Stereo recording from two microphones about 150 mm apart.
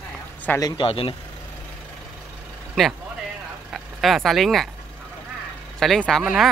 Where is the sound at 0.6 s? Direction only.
30° left (ahead or behind).